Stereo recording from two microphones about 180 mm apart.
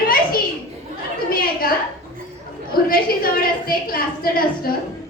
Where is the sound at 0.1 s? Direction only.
55° left (ahead or behind).